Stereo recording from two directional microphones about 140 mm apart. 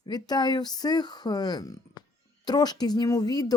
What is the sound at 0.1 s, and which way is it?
Speech, 30° left (ahead or behind).